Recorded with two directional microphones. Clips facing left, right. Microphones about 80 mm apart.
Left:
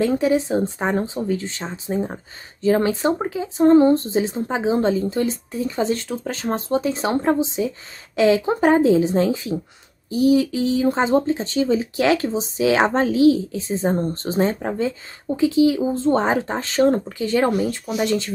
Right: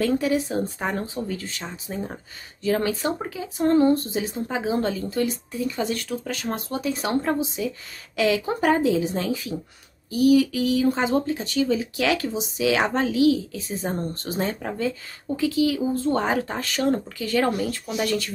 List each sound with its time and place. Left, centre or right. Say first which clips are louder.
0.0 s speech: left 4 dB; left